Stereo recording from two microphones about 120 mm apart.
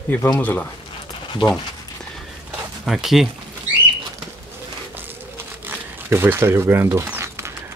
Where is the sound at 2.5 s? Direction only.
5° right (ahead or behind).